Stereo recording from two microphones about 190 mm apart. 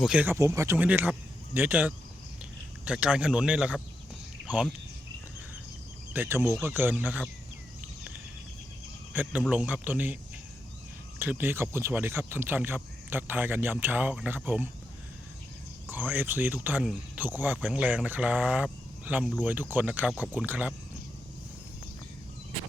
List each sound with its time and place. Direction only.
0.0 s speech: 5° right (ahead or behind)
6.1 s speech: 15° right (ahead or behind)
9.1 s speech: 10° right (ahead or behind)
11.2 s speech: 10° right (ahead or behind)
15.9 s speech: 10° right (ahead or behind)